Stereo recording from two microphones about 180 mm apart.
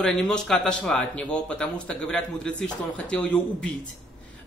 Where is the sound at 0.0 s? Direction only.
5° left (ahead or behind).